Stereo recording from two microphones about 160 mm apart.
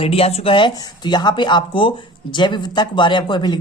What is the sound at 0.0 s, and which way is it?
Speech, 40° left (ahead or behind).